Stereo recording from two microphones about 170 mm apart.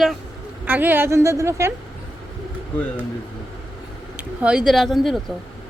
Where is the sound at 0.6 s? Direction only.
10° right (ahead or behind).